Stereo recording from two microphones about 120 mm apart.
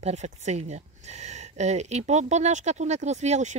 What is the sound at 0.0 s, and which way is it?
Speech, 70° right (ahead or behind).